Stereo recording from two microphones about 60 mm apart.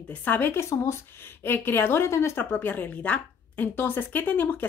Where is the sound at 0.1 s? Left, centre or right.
Left.